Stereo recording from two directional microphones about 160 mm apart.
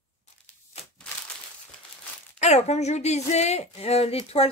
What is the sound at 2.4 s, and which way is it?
Speech, 45° left (ahead or behind).